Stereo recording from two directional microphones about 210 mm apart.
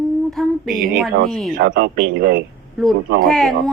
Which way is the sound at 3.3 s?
Centre (ahead or behind).